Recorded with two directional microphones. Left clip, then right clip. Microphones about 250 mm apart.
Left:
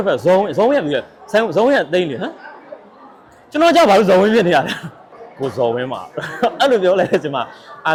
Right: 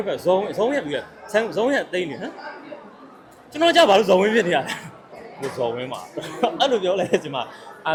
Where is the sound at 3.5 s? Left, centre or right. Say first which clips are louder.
Left 4 dB; left.